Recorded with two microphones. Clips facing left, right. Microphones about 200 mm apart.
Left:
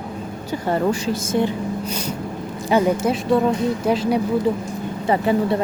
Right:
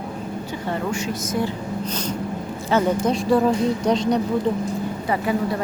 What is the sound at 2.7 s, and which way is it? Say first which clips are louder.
A woman's voice: left 2 dB; 5° left (ahead or behind).